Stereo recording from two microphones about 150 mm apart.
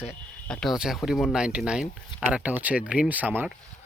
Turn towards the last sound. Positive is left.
turn(degrees=-10)  # may be behind; listen again after turning